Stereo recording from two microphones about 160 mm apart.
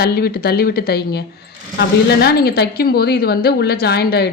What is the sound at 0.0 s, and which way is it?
A woman's voice, 75° left (ahead or behind).